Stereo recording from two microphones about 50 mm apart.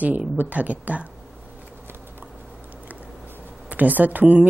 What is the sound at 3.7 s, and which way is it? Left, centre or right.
Speech, right.